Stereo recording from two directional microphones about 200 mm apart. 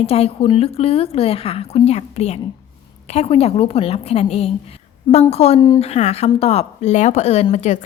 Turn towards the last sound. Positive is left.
turn(degrees=35)  # may be behind; listen again after turning